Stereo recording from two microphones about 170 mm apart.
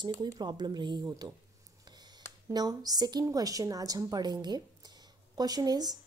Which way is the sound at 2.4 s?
20° right (ahead or behind).